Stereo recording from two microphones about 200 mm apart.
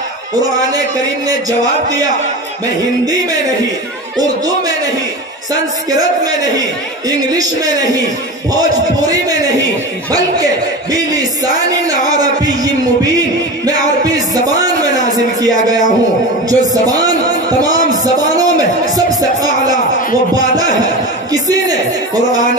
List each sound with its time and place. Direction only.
5.9 s a man's voice: 20° right (ahead or behind)
10.1 s speech: 20° right (ahead or behind)
13.7 s music: 20° right (ahead or behind)
16.4 s speech: 20° right (ahead or behind)
18.9 s music: 20° right (ahead or behind)
21.3 s a man's voice: 20° right (ahead or behind)